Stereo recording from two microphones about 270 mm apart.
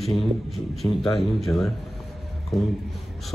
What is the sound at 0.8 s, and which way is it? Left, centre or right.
Speech, centre.